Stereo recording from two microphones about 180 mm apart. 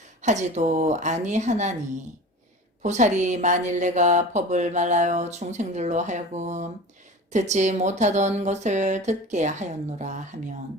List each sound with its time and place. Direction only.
0.2 s a woman's voice: 40° right (ahead or behind)
2.8 s a woman's voice: 40° right (ahead or behind)